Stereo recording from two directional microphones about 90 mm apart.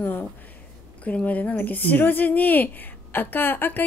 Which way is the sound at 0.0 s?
20° left (ahead or behind).